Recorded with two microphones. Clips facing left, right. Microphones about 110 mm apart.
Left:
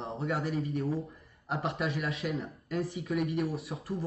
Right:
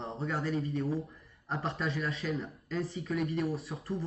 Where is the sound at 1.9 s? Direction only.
30° right (ahead or behind).